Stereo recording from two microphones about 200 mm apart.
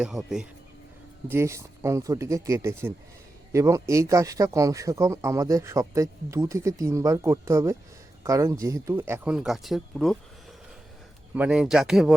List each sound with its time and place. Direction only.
0.0 s speech: centre (ahead or behind)
1.3 s speech: 15° right (ahead or behind)
11.3 s speech: 5° right (ahead or behind)